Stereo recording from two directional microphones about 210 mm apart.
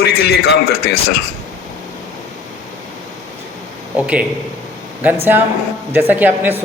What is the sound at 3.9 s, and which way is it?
Speech, 5° right (ahead or behind).